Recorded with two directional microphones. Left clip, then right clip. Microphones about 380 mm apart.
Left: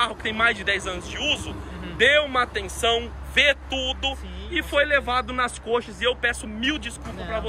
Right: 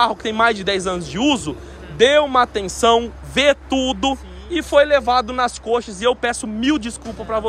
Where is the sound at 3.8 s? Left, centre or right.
Right.